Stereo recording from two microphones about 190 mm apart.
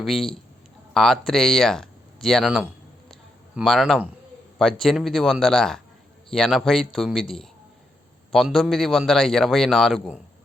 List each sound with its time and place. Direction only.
0.0 s a man's voice: centre (ahead or behind)
3.1 s a sound: centre (ahead or behind)
4.5 s a man's voice: centre (ahead or behind)